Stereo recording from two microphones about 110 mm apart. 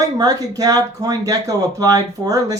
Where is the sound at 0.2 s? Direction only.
35° right (ahead or behind).